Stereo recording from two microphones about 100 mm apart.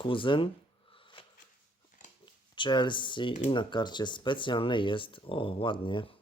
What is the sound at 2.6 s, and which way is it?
Speech, 50° left (ahead or behind).